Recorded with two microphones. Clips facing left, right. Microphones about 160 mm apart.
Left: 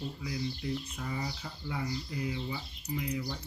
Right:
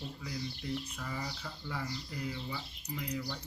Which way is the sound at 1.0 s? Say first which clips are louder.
Left 3 dB; 15° left (ahead or behind).